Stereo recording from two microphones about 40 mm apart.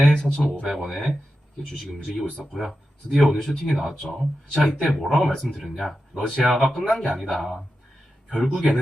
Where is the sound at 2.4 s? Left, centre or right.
Centre.